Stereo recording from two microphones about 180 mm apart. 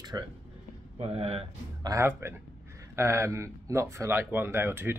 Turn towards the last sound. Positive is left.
turn(degrees=-15)  # may be behind; listen again after turning